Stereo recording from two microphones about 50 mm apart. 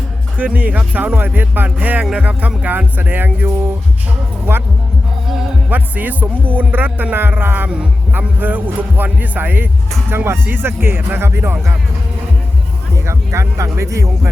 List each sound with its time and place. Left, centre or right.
0.3 s speech: right
5.7 s speech: right
13.1 s speech: right